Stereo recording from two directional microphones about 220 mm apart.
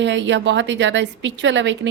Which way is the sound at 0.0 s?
55° right (ahead or behind).